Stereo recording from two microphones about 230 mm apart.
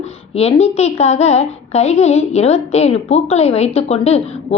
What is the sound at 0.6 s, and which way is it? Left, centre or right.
A woman's voice, left.